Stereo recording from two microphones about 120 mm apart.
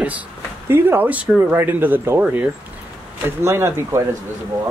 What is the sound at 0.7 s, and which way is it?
Speech, 20° right (ahead or behind).